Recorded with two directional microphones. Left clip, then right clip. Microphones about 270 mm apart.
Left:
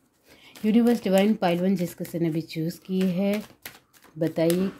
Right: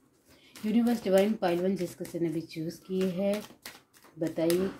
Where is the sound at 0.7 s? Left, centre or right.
Left.